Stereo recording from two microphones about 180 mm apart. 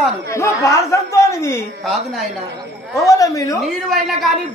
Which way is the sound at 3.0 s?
20° left (ahead or behind).